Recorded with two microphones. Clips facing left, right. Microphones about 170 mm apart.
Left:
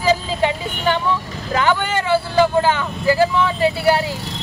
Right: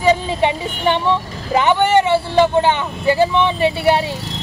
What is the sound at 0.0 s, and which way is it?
Speech, 25° right (ahead or behind).